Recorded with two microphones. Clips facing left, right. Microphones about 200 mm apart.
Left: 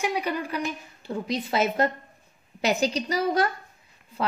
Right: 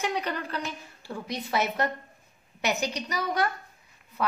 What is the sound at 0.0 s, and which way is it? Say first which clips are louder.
A woman's voice: left 3 dB; 10° left (ahead or behind).